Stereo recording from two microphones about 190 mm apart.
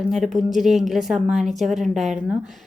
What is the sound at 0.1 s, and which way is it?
Speech, centre (ahead or behind).